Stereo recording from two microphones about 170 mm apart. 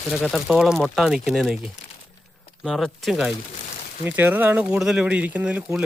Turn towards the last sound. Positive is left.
turn(degrees=-5)  # may be behind; listen again after turning